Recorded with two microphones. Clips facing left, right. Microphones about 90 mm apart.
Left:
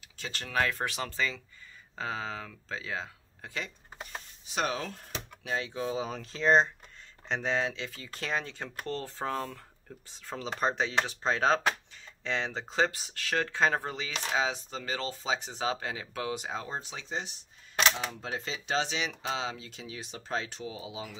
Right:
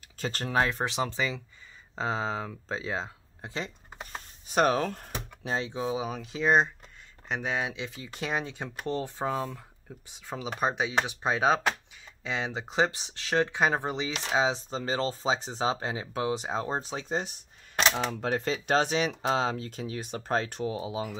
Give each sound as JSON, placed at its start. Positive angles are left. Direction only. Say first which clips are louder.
{"t": 0.2, "sound": "speech", "louder": "right 7 dB", "side_deg": -40}
{"t": 0.6, "sound": "speech", "louder": "right 3 dB", "side_deg": -25}
{"t": 4.6, "sound": "speech", "louder": "right 8 dB", "side_deg": -45}
{"t": 5.5, "sound": "speech", "louder": "right 2 dB", "side_deg": -25}
{"t": 5.9, "sound": "speech", "louder": "right 2 dB", "side_deg": -10}
{"t": 17.9, "sound": "speech", "louder": "right 7 dB", "side_deg": -60}